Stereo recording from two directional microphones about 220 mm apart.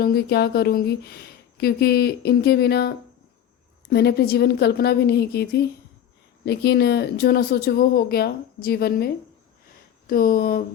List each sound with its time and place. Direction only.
0.0 s speech: 45° left (ahead or behind)
10.1 s speech: 40° left (ahead or behind)